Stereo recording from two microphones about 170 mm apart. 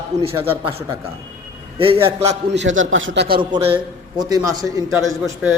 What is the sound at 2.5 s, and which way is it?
Speech, 90° right.